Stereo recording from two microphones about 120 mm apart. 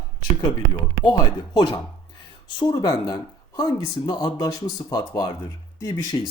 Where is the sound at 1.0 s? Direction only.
35° left (ahead or behind).